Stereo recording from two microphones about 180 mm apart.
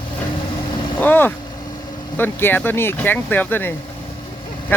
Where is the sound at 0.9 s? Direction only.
10° left (ahead or behind).